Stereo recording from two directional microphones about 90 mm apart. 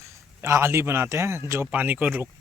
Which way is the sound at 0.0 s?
30° right (ahead or behind).